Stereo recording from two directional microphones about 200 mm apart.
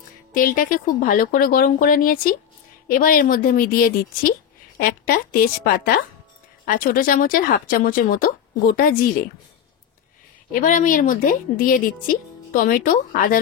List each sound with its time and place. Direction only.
0.3 s a woman's voice: 45° left (ahead or behind)
10.5 s a woman's voice: 40° left (ahead or behind)